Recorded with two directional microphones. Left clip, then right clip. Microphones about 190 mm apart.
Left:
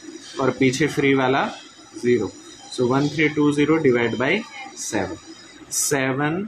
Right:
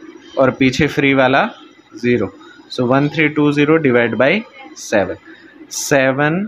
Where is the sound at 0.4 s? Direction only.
50° right (ahead or behind).